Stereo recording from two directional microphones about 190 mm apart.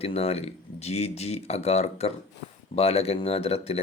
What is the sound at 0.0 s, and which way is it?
Speech, 30° left (ahead or behind).